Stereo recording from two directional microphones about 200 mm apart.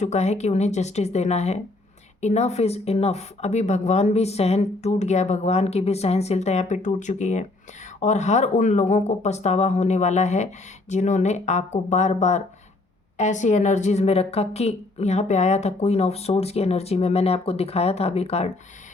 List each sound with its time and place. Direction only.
0.0 s a woman's voice: 35° left (ahead or behind)